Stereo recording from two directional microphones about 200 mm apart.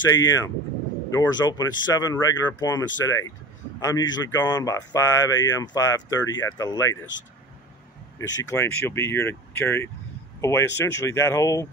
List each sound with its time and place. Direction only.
0.1 s speech: 20° left (ahead or behind)
8.2 s speech: 15° left (ahead or behind)